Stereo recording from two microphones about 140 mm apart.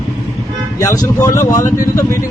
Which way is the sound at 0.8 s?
20° left (ahead or behind).